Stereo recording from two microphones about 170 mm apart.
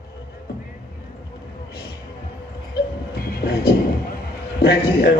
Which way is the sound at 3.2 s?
65° left (ahead or behind).